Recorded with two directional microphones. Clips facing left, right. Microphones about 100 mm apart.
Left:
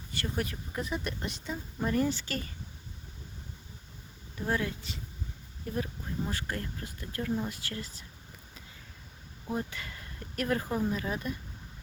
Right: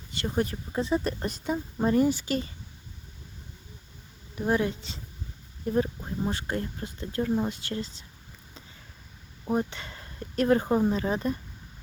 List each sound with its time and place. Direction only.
0.1 s speech: 20° right (ahead or behind); by 1.9 s 40° right (ahead or behind)
1.9 s speech: 15° right (ahead or behind)
4.4 s speech: 20° right (ahead or behind)
9.5 s speech: 25° right (ahead or behind)